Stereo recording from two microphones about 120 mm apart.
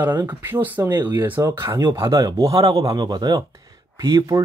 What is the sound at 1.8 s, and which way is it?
Speech, 35° right (ahead or behind).